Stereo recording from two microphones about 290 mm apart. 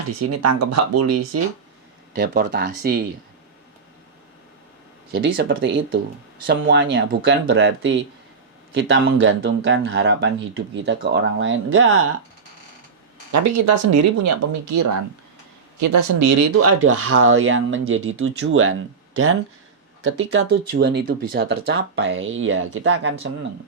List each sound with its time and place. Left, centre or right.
0.2 s speech: right
2.1 s speech: right
5.4 s speech: right
13.3 s speech: right
20.7 s speech: right